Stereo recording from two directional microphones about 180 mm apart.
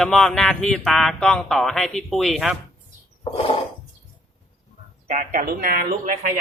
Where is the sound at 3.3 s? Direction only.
30° left (ahead or behind).